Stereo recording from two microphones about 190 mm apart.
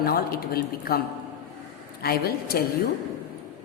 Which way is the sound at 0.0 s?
55° left (ahead or behind).